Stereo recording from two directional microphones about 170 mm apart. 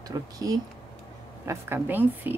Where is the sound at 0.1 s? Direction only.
20° right (ahead or behind).